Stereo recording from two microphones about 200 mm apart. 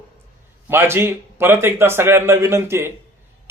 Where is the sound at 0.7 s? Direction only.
10° right (ahead or behind).